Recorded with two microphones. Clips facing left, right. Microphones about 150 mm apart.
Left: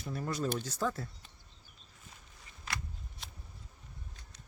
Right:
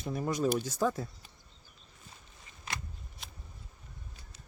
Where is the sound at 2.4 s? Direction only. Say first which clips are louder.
Even; 20° right (ahead or behind).